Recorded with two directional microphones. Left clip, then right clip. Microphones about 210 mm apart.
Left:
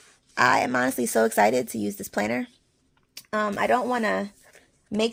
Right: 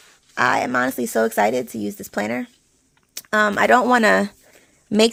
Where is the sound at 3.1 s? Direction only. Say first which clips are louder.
Right 8 dB; 25° right (ahead or behind).